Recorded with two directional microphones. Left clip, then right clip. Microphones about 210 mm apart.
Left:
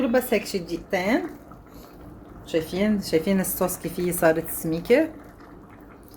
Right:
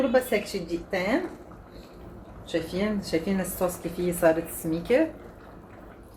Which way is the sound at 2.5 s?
55° left (ahead or behind).